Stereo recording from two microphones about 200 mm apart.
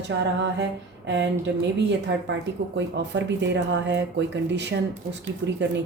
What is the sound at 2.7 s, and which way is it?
Speech, 65° right (ahead or behind).